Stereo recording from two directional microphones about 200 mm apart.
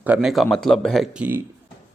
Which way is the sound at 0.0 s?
5° right (ahead or behind).